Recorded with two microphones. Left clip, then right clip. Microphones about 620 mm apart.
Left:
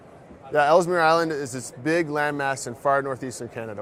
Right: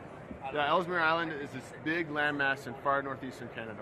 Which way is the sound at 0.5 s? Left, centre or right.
Left.